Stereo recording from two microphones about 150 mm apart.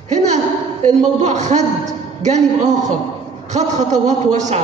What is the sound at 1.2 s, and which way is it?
Speech, 55° right (ahead or behind).